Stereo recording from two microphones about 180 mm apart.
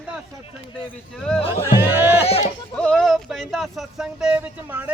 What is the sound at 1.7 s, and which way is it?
Music, 10° right (ahead or behind).